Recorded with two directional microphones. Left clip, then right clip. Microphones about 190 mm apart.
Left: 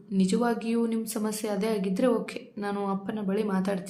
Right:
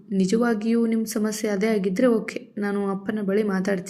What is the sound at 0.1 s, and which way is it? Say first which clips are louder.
A woman's voice: right 4 dB; 10° right (ahead or behind).